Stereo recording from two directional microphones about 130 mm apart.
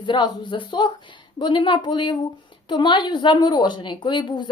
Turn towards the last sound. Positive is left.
turn(degrees=35)  # may be behind; listen again after turning